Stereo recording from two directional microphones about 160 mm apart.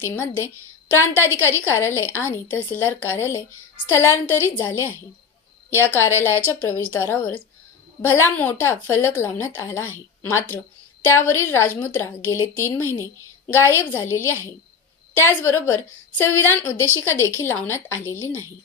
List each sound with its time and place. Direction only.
0.0 s a woman's voice: 15° left (ahead or behind)
6.1 s a woman's voice: 15° left (ahead or behind)